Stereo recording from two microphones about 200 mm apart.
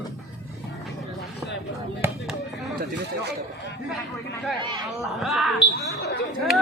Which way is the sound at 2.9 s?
60° right (ahead or behind).